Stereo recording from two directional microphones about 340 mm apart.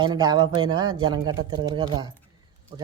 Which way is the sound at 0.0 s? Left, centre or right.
Centre.